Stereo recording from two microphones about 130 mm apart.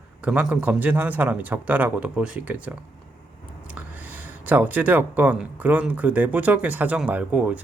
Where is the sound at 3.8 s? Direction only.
15° right (ahead or behind).